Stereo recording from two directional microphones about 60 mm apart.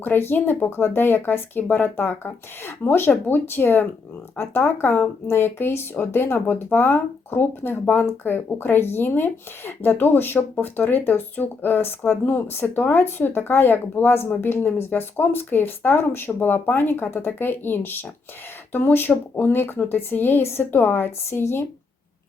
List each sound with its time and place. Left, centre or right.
0.0 s speech: left